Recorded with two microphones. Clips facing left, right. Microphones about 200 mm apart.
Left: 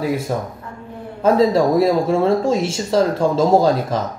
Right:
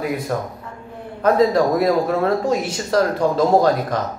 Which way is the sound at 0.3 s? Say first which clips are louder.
Left 1 dB; 20° left (ahead or behind).